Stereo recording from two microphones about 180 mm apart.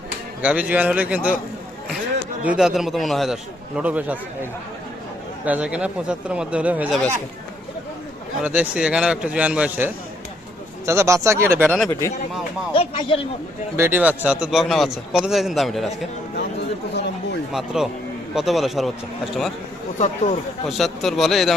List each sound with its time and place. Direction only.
0.4 s speech: 10° right (ahead or behind)
2.4 s a man's voice: 5° right (ahead or behind)
5.5 s speech: 5° right (ahead or behind)
8.4 s a man's voice: 10° right (ahead or behind)
11.9 s speech: 15° left (ahead or behind)
12.7 s speech: 30° left (ahead or behind)
13.7 s a man's voice: 15° right (ahead or behind)
17.5 s a man's voice: centre (ahead or behind)
20.0 s speech: 40° left (ahead or behind)
20.7 s a man's voice: centre (ahead or behind)